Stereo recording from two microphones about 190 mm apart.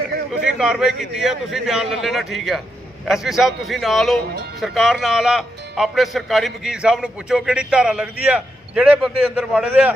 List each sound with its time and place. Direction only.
0.4 s speech: 5° right (ahead or behind)